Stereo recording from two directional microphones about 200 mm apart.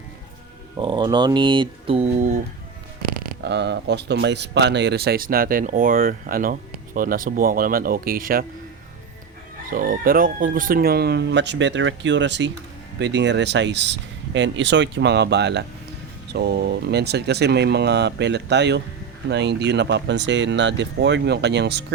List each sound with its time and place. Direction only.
0.8 s speech: 25° right (ahead or behind)
3.4 s speech: 60° right (ahead or behind)
9.6 s speech: 45° right (ahead or behind)